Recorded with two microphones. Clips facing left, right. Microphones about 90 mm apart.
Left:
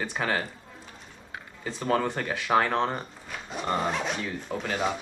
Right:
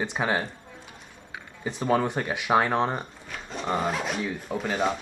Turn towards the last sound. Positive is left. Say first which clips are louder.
# right 2 dB
turn(degrees=0)  # may be behind; listen again after turning